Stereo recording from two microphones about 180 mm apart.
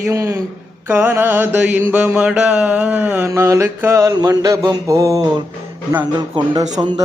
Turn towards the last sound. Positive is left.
turn(degrees=-20)  # may be behind; listen again after turning